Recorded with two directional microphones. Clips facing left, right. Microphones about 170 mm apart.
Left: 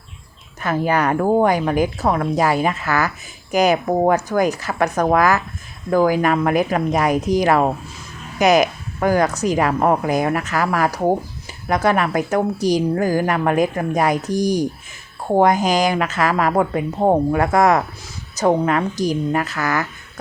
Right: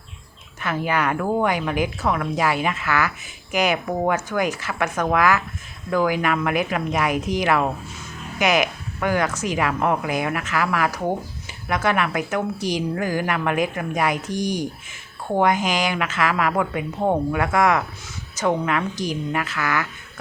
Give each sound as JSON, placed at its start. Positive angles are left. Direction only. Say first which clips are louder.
{"t": 0.6, "sound": "a woman's voice", "louder": "left 4 dB", "side_deg": 40}